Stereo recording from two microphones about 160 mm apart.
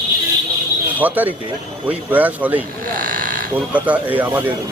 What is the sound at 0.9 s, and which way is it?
A man's voice, 10° right (ahead or behind).